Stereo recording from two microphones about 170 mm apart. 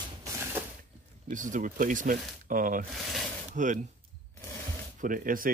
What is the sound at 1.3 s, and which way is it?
Speech, 50° right (ahead or behind).